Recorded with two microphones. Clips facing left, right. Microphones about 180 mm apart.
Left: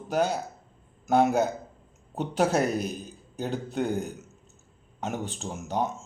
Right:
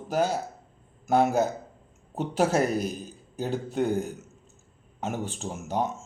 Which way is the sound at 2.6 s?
45° right (ahead or behind).